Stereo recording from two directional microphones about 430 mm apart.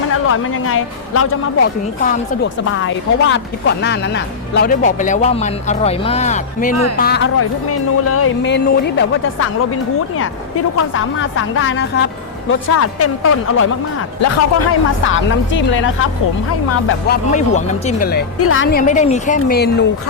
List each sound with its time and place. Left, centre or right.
0.3 s speech: left
10.9 s speech: left
17.1 s speech: centre